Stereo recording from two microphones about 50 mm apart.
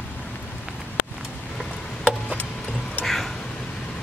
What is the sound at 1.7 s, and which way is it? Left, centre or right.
Tick-tock, left.